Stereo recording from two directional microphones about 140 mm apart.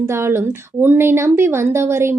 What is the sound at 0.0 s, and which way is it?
A woman's voice, 20° right (ahead or behind).